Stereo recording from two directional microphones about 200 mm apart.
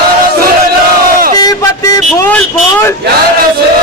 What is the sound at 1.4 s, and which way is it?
Speech, 20° left (ahead or behind).